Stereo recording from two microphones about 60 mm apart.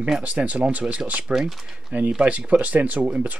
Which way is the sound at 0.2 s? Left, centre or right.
Right.